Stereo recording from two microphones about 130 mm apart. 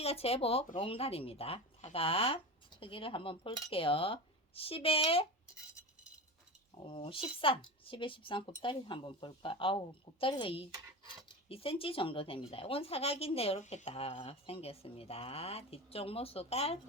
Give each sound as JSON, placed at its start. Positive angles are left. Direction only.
{"t": 0.0, "sound": "speech", "side_deg": 50}
{"t": 6.8, "sound": "speech", "side_deg": 40}